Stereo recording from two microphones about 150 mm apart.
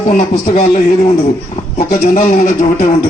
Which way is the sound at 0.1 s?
55° left (ahead or behind).